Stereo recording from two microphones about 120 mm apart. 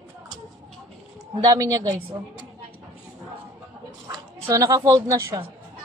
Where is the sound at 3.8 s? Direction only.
25° right (ahead or behind).